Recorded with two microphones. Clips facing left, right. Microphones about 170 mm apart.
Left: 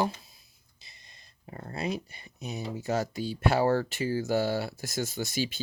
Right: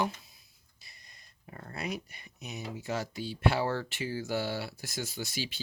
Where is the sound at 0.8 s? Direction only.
25° left (ahead or behind).